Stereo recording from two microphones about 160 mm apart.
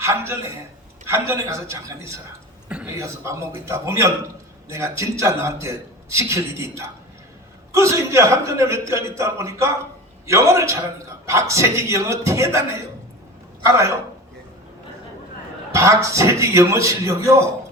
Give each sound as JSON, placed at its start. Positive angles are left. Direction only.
{"t": 0.0, "sound": "a man's voice", "side_deg": -15}
{"t": 2.6, "sound": "a sound", "side_deg": -10}
{"t": 3.0, "sound": "a man's voice", "side_deg": -20}
{"t": 13.7, "sound": "speech", "side_deg": -20}
{"t": 15.7, "sound": "a man's voice", "side_deg": -20}